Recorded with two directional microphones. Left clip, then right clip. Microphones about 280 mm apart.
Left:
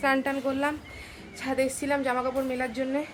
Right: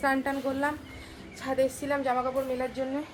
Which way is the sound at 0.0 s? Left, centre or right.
Centre.